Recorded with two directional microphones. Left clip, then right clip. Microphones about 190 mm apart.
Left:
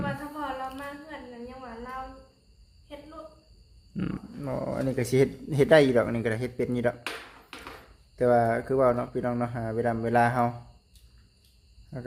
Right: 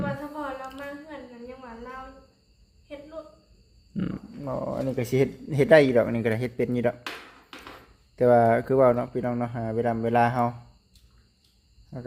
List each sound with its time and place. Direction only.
0.0 s a sound: 5° right (ahead or behind)
1.5 s a woman's voice: 10° right (ahead or behind)
3.9 s speech: centre (ahead or behind)
8.1 s speech: 20° right (ahead or behind)
9.1 s speech: 10° right (ahead or behind)
11.9 s speech: 5° right (ahead or behind)